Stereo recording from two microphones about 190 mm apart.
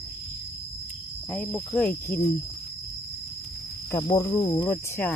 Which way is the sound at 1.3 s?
10° left (ahead or behind).